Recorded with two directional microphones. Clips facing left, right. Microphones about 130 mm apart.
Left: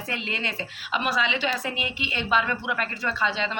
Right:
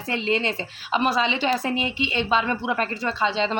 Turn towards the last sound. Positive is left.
turn(degrees=-25)  # may be behind; listen again after turning